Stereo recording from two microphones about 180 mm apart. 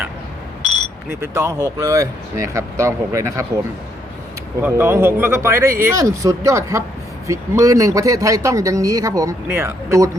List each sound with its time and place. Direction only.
1.2 s speech: 15° right (ahead or behind)
4.6 s speech: 15° right (ahead or behind)